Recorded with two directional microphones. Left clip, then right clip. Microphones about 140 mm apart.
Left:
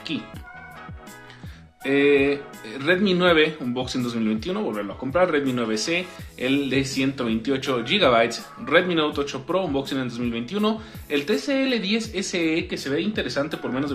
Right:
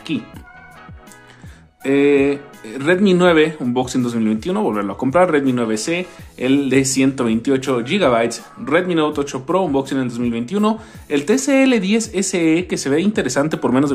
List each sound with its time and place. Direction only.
1.8 s speech: 30° right (ahead or behind)
4.7 s speech: 45° right (ahead or behind)
5.4 s speech: 30° right (ahead or behind)
6.8 s speech: 45° right (ahead or behind); by 11.2 s 30° right (ahead or behind)
11.2 s speech: 50° right (ahead or behind)
12.7 s speech: 60° right (ahead or behind)